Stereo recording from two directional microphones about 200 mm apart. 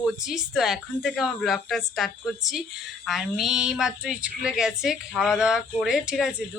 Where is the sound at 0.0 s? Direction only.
Centre (ahead or behind).